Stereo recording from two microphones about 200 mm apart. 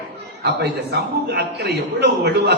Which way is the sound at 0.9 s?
55° right (ahead or behind).